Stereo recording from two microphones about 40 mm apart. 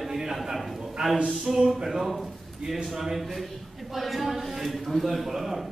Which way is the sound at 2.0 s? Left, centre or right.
Centre.